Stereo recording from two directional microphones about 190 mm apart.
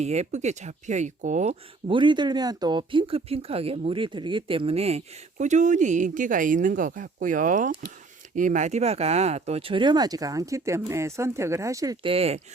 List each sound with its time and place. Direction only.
0.0 s speech: 35° right (ahead or behind)
1.9 s speech: 25° right (ahead or behind)
12.1 s speech: 30° right (ahead or behind)